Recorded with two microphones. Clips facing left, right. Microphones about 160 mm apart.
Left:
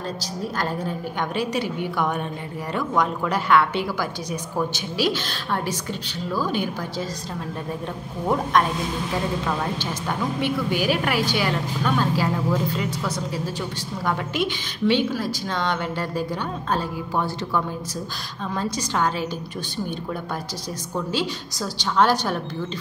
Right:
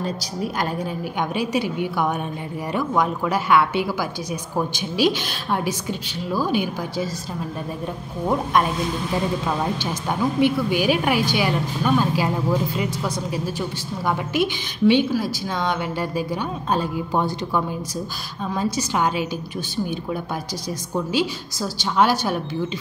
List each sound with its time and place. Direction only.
0.0 s a woman's voice: 15° right (ahead or behind)
9.8 s a woman's voice: 15° right (ahead or behind)
20.9 s a woman's voice: 10° right (ahead or behind)